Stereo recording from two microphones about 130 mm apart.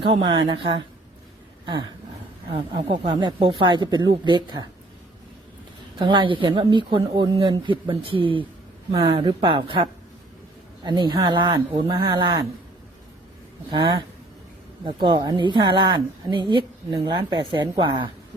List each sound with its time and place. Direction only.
0.0 s speech: 40° right (ahead or behind)
2.5 s speech: 45° right (ahead or behind)
6.0 s speech: 40° right (ahead or behind)
13.7 s speech: 35° right (ahead or behind)